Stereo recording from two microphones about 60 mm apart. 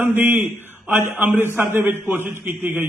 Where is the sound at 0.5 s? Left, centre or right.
Right.